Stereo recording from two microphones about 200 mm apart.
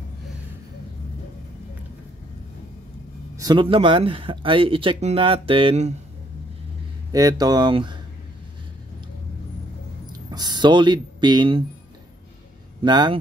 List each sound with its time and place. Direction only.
3.3 s speech: 20° right (ahead or behind)
7.1 s speech: 20° right (ahead or behind)
10.3 s speech: 20° right (ahead or behind)
12.8 s speech: 20° right (ahead or behind)